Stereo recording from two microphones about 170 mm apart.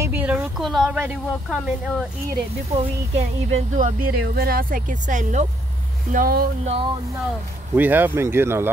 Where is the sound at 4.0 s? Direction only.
60° right (ahead or behind).